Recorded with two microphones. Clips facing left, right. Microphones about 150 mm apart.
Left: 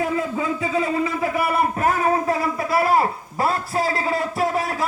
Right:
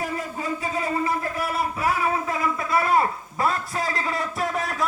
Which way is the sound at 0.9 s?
90° left.